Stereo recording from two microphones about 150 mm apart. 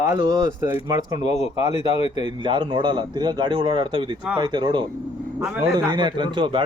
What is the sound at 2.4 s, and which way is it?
A man's voice, 35° right (ahead or behind).